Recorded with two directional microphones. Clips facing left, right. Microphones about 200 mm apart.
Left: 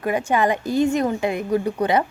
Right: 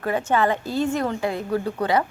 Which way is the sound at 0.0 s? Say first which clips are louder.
Left 1 dB; 15° left (ahead or behind).